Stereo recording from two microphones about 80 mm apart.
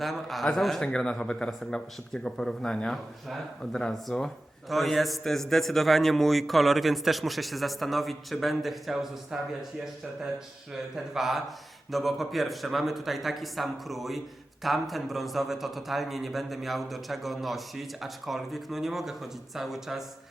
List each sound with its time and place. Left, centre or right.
0.0 s a man's voice: centre
10.9 s a man's voice: centre